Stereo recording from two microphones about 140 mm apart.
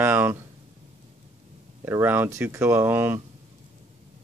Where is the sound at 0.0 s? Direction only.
15° right (ahead or behind).